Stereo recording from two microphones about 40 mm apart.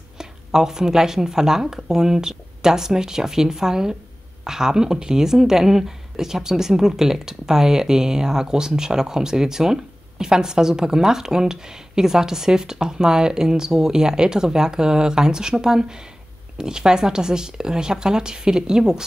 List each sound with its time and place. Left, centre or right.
0.2 s speech: centre